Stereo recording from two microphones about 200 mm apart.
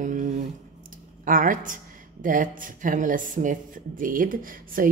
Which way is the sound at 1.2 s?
40° right (ahead or behind).